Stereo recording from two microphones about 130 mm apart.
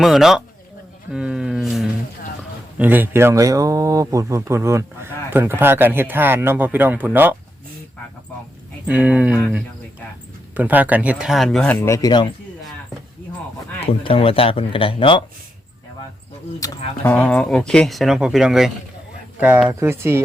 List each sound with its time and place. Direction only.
0.0 s speech: centre (ahead or behind)
8.9 s speech: 10° right (ahead or behind)
10.5 s speech: 15° right (ahead or behind); by 11.8 s 5° left (ahead or behind)
11.8 s speech: 25° left (ahead or behind)
14.0 s speech: 45° left (ahead or behind)
17.0 s speech: 10° left (ahead or behind)
19.6 s speech: 20° right (ahead or behind)